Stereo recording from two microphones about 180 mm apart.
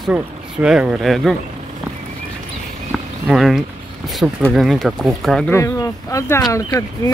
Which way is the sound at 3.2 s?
Centre (ahead or behind).